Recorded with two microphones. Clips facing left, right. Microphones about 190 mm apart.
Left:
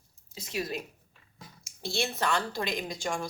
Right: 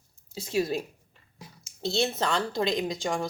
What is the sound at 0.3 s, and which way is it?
A woman's voice, 30° right (ahead or behind).